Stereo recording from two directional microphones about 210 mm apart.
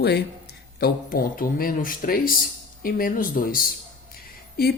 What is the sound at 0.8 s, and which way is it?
Speech, 45° left (ahead or behind).